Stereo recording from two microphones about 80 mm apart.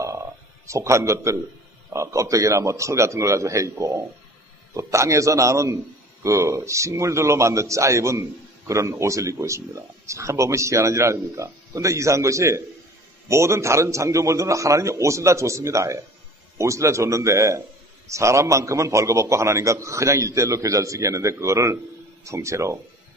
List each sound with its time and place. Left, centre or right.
0.7 s a man's voice: right